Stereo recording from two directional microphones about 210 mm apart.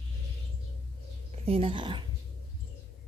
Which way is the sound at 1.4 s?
25° right (ahead or behind).